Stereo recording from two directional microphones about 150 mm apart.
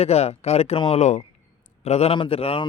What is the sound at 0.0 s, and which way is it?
A man's voice, 45° left (ahead or behind).